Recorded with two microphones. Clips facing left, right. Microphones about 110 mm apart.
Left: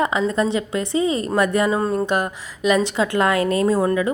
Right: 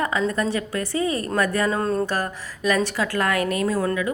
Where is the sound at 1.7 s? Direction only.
5° left (ahead or behind).